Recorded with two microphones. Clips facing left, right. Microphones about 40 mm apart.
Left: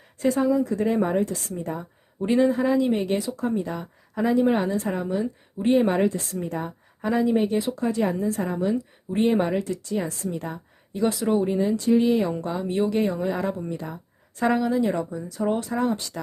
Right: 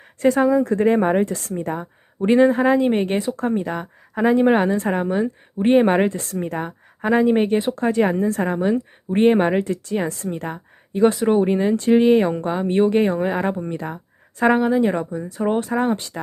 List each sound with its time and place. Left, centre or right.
0.2 s speech: right